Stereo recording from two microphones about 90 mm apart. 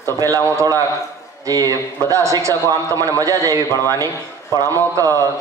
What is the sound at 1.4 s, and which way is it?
A man's voice, 40° right (ahead or behind).